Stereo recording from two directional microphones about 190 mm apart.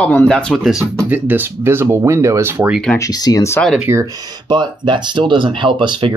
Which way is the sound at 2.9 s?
20° left (ahead or behind).